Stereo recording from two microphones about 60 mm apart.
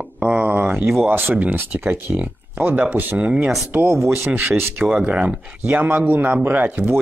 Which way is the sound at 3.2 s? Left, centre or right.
Centre.